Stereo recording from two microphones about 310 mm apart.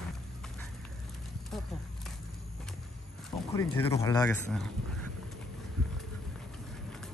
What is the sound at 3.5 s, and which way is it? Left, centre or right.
Speech, centre.